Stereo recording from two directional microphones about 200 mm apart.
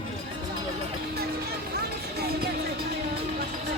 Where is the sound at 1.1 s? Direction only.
50° right (ahead or behind).